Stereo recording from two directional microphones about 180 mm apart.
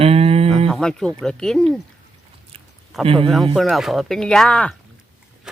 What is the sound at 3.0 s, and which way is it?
Speech, 30° right (ahead or behind).